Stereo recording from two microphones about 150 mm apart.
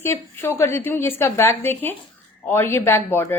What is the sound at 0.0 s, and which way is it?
A woman's voice, 15° left (ahead or behind).